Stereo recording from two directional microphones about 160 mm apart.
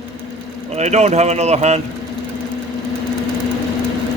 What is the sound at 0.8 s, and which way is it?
Speech, 45° right (ahead or behind).